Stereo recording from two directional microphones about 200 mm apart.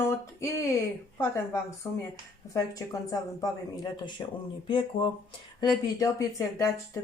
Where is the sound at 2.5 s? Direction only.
15° left (ahead or behind).